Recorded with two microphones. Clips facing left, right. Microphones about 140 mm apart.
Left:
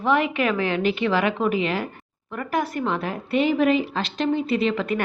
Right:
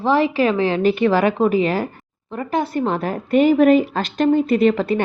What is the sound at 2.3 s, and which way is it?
A woman's voice, 25° right (ahead or behind).